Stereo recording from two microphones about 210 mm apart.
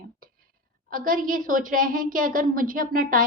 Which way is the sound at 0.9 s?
40° right (ahead or behind).